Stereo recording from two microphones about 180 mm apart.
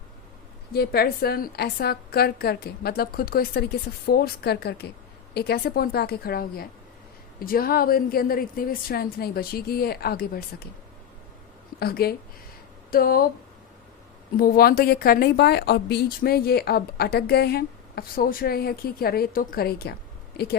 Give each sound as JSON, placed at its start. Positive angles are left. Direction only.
{"t": 0.7, "sound": "a woman's voice", "side_deg": 60}
{"t": 11.8, "sound": "a woman's voice", "side_deg": 60}
{"t": 14.3, "sound": "a woman's voice", "side_deg": 55}